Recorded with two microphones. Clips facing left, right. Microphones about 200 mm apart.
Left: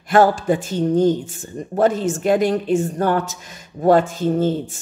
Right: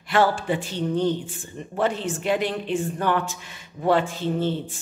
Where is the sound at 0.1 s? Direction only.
45° left (ahead or behind).